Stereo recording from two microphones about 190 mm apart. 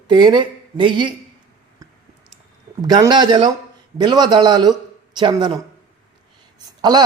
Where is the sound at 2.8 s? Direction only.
20° right (ahead or behind).